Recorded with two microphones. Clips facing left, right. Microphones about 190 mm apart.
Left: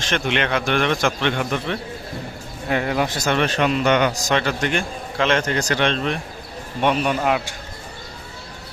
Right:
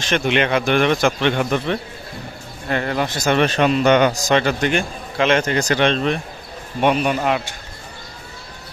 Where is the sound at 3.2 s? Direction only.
15° right (ahead or behind).